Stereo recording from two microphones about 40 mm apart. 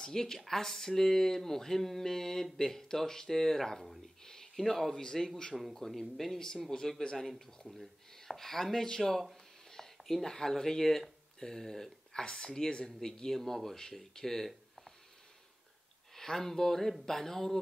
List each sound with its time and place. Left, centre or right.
0.0 s speech: centre
4.2 s a sound: centre
5.0 s speech: centre
5.5 s speech: centre
16.2 s speech: centre